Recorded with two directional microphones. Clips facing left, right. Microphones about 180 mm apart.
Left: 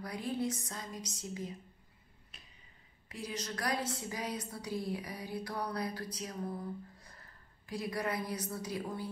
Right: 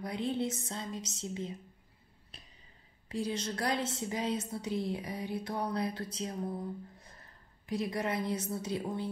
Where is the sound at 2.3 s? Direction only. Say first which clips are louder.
Right 4 dB; 35° right (ahead or behind).